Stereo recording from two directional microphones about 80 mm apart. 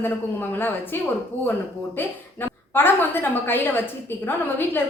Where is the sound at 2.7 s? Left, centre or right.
Left.